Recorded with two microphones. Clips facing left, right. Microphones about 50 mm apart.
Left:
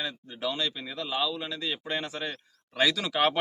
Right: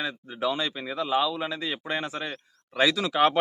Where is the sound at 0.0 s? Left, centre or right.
Centre.